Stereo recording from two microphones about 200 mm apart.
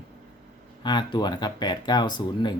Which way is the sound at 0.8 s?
20° left (ahead or behind).